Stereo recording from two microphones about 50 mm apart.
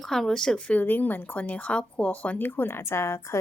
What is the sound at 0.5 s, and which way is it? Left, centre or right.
Speech, left.